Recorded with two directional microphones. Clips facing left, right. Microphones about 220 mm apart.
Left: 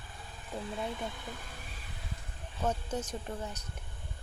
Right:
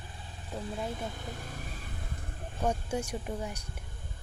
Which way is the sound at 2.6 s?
10° right (ahead or behind).